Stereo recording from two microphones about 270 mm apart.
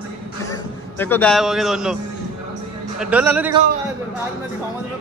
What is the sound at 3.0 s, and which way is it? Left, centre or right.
Speech, centre.